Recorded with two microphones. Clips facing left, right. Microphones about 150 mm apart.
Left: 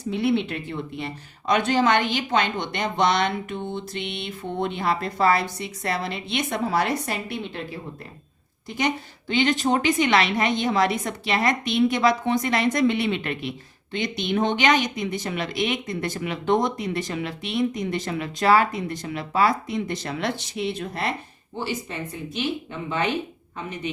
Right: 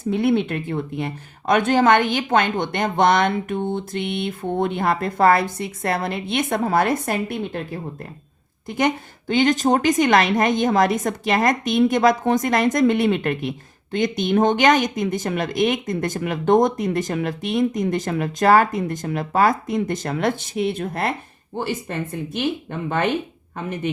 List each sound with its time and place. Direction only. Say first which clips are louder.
0.0 s speech: right 4 dB; 50° right (ahead or behind)